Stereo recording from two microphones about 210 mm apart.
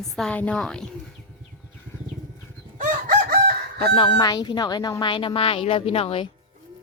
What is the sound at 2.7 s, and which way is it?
Chicken, 40° right (ahead or behind).